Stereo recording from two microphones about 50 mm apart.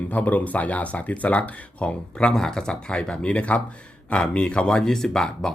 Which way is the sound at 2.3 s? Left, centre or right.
Centre.